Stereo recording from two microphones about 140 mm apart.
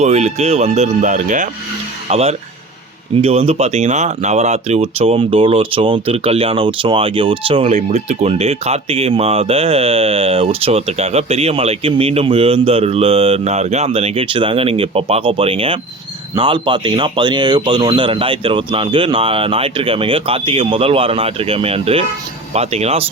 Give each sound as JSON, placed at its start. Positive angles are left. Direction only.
{"t": 0.0, "sound": "speech", "side_deg": -55}
{"t": 2.0, "sound": "speech", "side_deg": -45}
{"t": 7.9, "sound": "speech", "side_deg": -55}